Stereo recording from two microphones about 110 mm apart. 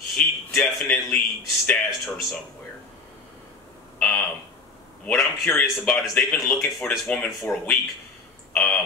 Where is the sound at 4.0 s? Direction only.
10° left (ahead or behind).